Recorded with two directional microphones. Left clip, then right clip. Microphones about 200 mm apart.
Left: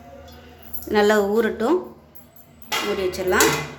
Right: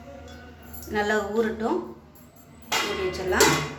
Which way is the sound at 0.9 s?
60° left (ahead or behind).